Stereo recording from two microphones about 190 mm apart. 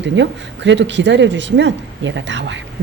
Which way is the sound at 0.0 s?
70° right (ahead or behind).